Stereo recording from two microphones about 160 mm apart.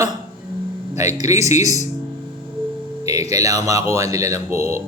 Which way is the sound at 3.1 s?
20° right (ahead or behind).